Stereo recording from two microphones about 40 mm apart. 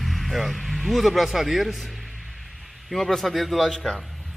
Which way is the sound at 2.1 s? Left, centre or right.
Centre.